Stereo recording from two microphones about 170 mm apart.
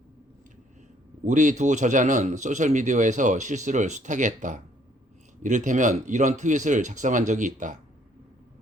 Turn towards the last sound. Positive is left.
turn(degrees=-45)  # may be behind; listen again after turning